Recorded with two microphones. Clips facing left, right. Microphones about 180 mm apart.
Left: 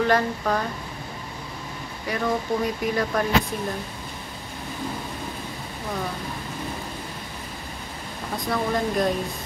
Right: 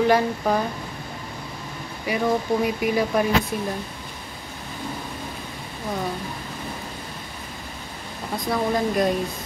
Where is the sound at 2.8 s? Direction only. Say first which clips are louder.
Right 3 dB; 10° right (ahead or behind).